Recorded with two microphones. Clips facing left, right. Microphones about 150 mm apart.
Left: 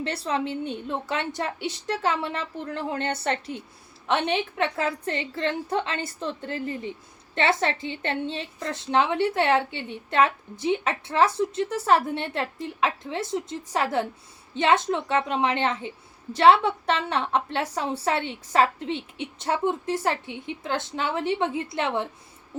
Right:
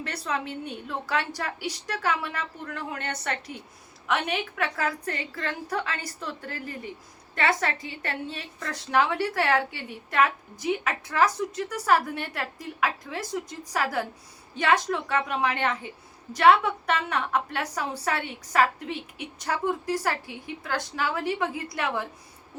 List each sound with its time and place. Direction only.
0.0 s a woman's voice: 30° left (ahead or behind)